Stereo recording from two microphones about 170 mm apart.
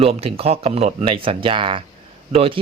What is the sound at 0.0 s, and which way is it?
Speech, 35° right (ahead or behind).